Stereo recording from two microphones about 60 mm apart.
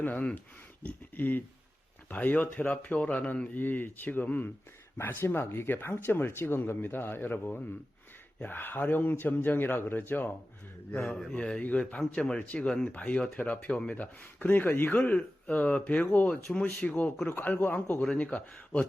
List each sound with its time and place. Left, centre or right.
0.0 s speech: left
11.3 s speech: centre
11.9 s speech: centre